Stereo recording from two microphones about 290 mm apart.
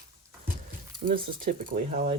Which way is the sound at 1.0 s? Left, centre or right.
Right.